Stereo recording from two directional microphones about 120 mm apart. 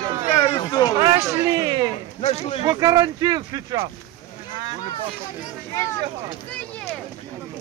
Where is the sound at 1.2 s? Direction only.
25° right (ahead or behind).